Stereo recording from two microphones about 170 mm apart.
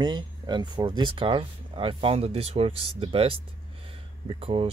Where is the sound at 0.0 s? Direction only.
25° right (ahead or behind).